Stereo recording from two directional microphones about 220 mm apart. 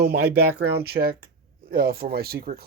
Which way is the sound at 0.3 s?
45° right (ahead or behind).